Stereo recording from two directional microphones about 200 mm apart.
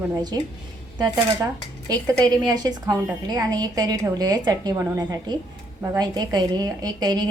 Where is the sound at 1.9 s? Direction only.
20° right (ahead or behind).